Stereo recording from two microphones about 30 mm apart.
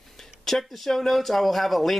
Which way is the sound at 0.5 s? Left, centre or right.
Centre.